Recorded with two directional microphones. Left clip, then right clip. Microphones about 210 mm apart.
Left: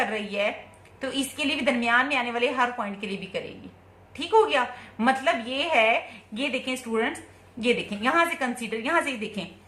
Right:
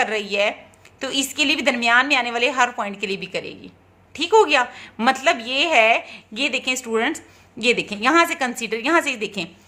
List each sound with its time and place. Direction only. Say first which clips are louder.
0.0 s a woman's voice: right 6 dB; 55° right (ahead or behind)